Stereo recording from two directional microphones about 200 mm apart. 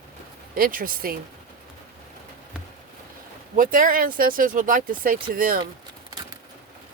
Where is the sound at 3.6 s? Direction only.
45° right (ahead or behind).